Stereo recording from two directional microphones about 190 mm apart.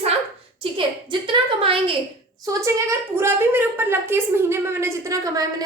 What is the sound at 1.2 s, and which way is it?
Speech, 25° right (ahead or behind).